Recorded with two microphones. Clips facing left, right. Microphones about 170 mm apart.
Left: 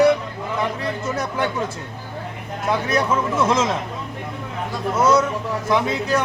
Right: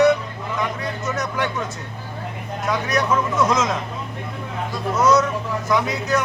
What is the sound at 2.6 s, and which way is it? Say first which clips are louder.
Speech: left 1 dB; 30° left (ahead or behind).